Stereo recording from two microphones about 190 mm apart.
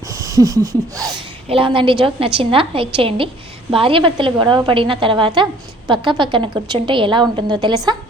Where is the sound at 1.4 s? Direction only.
30° right (ahead or behind).